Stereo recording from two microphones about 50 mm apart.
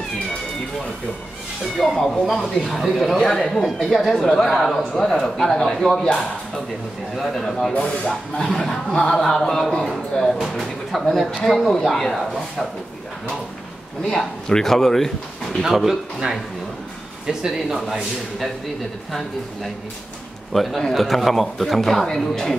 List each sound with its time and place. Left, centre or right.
1.8 s speech: centre
7.8 s speech: left
8.5 s speech: centre
14.0 s speech: centre
15.6 s speech: centre
17.3 s speech: centre
20.5 s speech: centre